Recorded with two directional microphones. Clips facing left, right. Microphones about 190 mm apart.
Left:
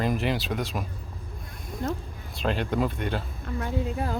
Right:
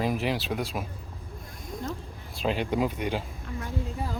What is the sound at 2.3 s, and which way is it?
Speech, 5° right (ahead or behind).